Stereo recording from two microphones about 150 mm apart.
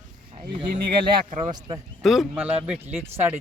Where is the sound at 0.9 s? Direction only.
35° right (ahead or behind).